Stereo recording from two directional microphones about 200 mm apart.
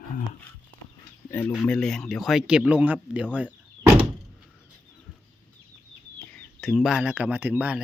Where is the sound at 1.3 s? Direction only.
10° left (ahead or behind); by 3.3 s 5° right (ahead or behind).